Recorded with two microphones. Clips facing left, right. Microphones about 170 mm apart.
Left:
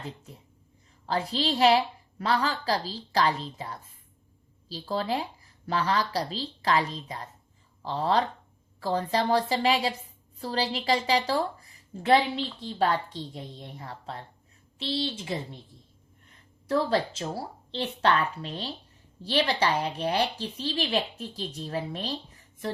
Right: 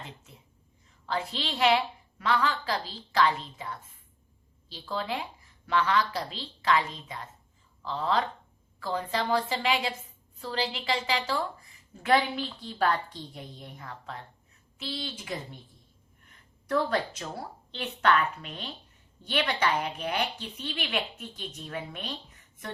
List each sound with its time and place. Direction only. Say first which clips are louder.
1.0 s a woman's voice: left 5 dB; 35° left (ahead or behind)
16.6 s a woman's voice: left 2 dB; 30° left (ahead or behind)